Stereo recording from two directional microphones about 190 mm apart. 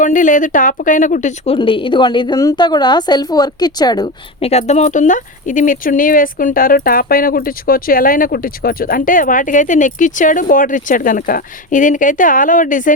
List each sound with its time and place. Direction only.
0.0 s a woman's voice: 45° left (ahead or behind)
1.5 s a woman's voice: 25° left (ahead or behind); by 12.9 s 45° left (ahead or behind)